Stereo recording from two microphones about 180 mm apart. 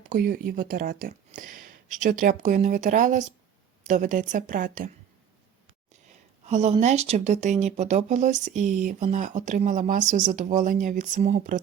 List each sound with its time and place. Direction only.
0.1 s speech: 50° right (ahead or behind)
6.4 s speech: 40° right (ahead or behind)